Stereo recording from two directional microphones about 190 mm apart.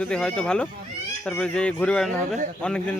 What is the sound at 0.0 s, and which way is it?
A man's voice, 5° left (ahead or behind).